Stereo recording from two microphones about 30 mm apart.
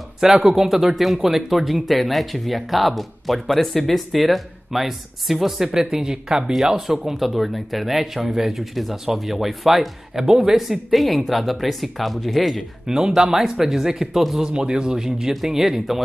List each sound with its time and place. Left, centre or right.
0.4 s speech: centre
5.7 s speech: centre
6.9 s speech: centre
12.8 s speech: right
13.4 s speech: centre
14.4 s speech: right
15.4 s speech: centre